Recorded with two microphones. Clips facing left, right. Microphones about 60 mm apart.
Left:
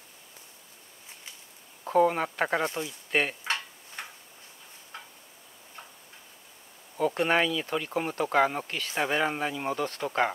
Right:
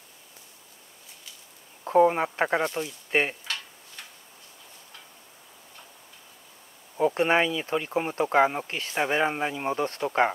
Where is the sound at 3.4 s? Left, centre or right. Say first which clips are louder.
Left 4 dB; left.